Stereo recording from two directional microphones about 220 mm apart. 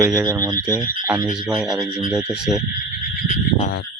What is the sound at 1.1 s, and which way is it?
A man's voice, 5° right (ahead or behind).